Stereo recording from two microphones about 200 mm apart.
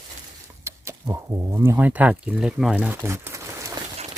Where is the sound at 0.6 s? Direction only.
15° right (ahead or behind).